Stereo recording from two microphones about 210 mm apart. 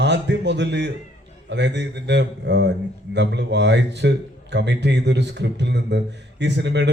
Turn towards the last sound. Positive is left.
turn(degrees=-55)  # may be behind; listen again after turning